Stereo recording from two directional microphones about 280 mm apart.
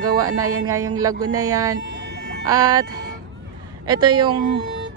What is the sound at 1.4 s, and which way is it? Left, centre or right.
Speech, centre.